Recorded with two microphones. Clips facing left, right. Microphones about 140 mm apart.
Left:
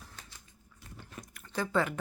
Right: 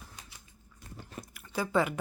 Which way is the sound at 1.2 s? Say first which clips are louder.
Right 1 dB; 10° right (ahead or behind).